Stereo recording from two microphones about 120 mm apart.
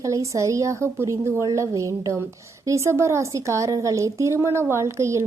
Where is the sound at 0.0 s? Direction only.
25° right (ahead or behind).